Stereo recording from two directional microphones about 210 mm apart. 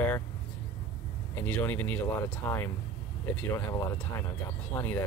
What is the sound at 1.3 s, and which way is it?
Speech, 10° left (ahead or behind).